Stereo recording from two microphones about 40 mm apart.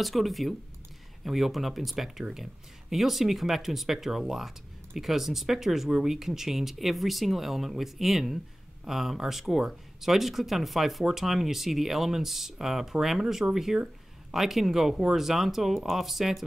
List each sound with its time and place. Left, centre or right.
0.0 s speech: centre